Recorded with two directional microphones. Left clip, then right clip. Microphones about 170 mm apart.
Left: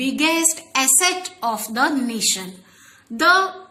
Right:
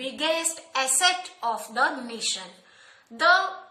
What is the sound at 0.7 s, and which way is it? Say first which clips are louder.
A woman's voice: left 3 dB; 30° left (ahead or behind).